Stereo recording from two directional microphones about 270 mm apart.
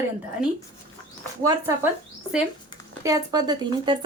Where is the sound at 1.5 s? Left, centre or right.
Centre.